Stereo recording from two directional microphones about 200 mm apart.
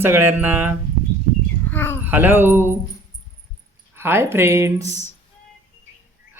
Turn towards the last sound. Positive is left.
turn(degrees=-15)  # may be behind; listen again after turning